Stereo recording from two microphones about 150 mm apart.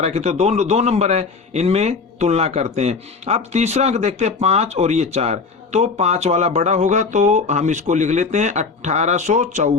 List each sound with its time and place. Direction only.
0.0 s a man's voice: 50° right (ahead or behind)